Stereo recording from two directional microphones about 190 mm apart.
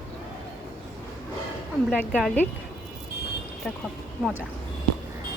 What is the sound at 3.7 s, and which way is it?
Speech, 5° left (ahead or behind).